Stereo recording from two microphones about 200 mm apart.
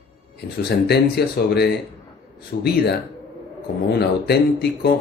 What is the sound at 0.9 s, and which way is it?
Speech, 55° left (ahead or behind).